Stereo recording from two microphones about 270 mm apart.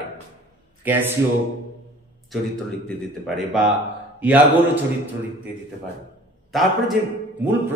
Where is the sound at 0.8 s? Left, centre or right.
Centre.